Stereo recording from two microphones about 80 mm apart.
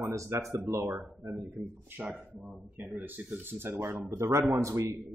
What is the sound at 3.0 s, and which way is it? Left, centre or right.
Speech, right.